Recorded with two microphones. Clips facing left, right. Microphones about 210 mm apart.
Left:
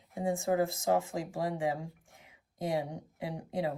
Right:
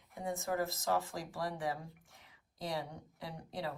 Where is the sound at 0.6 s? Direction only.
30° left (ahead or behind).